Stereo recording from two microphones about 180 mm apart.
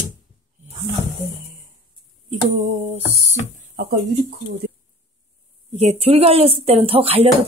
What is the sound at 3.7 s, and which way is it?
Speech, 60° right (ahead or behind).